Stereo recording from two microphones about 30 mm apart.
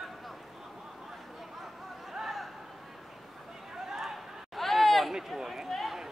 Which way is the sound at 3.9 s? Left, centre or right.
Centre.